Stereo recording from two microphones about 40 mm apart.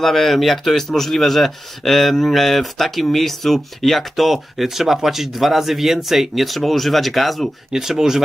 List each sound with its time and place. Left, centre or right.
0.0 s speech: centre
7.7 s speech: centre